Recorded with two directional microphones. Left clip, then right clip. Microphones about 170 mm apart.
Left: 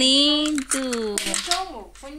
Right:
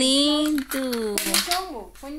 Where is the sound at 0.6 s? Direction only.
25° right (ahead or behind).